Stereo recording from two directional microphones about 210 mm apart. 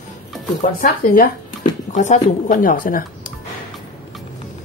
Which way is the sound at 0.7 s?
40° left (ahead or behind).